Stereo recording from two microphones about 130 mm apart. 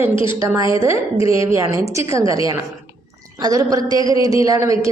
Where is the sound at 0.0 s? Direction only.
45° left (ahead or behind).